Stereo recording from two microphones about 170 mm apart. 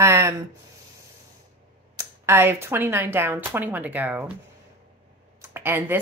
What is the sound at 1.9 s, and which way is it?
Speech, 15° right (ahead or behind).